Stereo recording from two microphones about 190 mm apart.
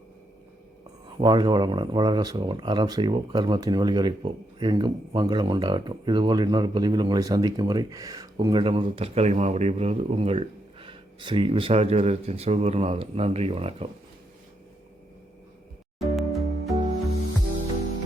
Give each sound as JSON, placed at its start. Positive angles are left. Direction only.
{"t": 1.0, "sound": "speech", "side_deg": -25}
{"t": 16.0, "sound": "music", "side_deg": 0}